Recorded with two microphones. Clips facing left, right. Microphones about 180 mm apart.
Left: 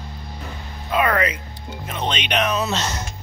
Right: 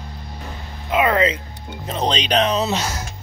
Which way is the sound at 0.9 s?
20° right (ahead or behind).